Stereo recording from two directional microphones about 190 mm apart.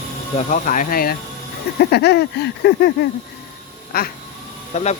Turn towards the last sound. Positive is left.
turn(degrees=35)  # may be behind; listen again after turning